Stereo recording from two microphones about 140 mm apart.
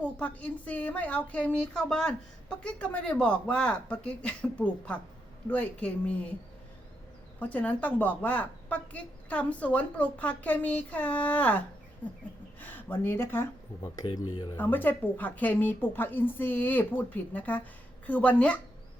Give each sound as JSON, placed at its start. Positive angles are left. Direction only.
{"t": 0.0, "sound": "a woman's voice", "side_deg": 10}
{"t": 7.3, "sound": "a woman's voice", "side_deg": 10}
{"t": 14.0, "sound": "speech", "side_deg": 35}
{"t": 14.5, "sound": "a woman's voice", "side_deg": 15}